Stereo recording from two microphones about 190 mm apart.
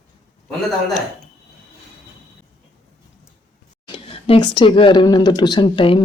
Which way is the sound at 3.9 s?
30° left (ahead or behind).